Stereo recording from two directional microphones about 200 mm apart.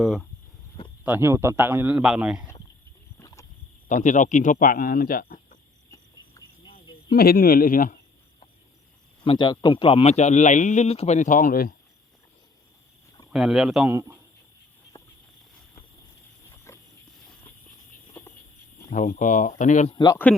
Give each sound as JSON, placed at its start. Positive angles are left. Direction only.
{"t": 0.0, "sound": "speech", "side_deg": 0}
{"t": 1.0, "sound": "speech", "side_deg": -10}
{"t": 3.2, "sound": "a sound", "side_deg": 15}
{"t": 3.8, "sound": "speech", "side_deg": 40}
{"t": 7.1, "sound": "speech", "side_deg": 50}
{"t": 9.2, "sound": "speech", "side_deg": 25}
{"t": 13.3, "sound": "speech", "side_deg": -5}
{"t": 16.7, "sound": "a sound", "side_deg": 15}
{"t": 18.9, "sound": "speech", "side_deg": 40}
{"t": 20.3, "sound": "speech", "side_deg": 5}